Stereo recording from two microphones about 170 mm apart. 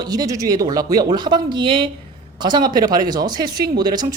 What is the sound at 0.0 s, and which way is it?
Speech, 20° right (ahead or behind).